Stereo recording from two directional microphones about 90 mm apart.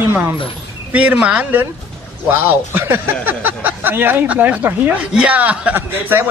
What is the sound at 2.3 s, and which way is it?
Speech, 25° right (ahead or behind).